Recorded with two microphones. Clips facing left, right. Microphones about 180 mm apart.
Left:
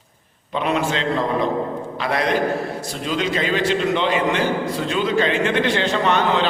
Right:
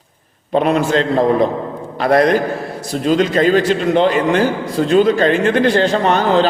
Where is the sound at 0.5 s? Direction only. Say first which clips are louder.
Right 7 dB; 45° right (ahead or behind).